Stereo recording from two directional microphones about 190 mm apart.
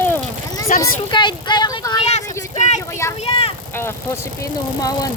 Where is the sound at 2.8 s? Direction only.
15° left (ahead or behind).